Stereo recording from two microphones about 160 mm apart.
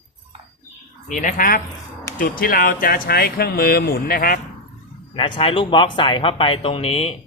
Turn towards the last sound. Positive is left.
turn(degrees=40)  # may be behind; listen again after turning